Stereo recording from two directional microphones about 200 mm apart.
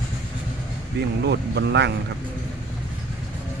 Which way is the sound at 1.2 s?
60° right (ahead or behind).